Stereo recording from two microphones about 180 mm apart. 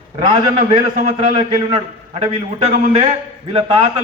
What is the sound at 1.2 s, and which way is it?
Speech, 30° right (ahead or behind).